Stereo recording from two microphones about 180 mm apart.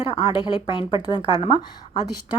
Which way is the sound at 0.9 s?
25° left (ahead or behind).